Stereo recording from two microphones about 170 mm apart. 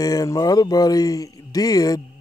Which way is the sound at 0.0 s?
20° left (ahead or behind).